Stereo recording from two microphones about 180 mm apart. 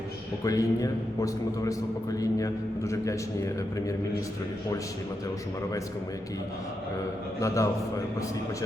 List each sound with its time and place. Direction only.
0.4 s a man's voice: 20° left (ahead or behind)
7.4 s a man's voice: 15° left (ahead or behind)